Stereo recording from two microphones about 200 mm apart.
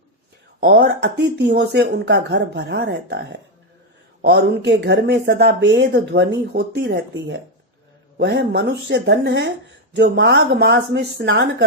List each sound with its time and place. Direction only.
0.6 s speech: 55° right (ahead or behind)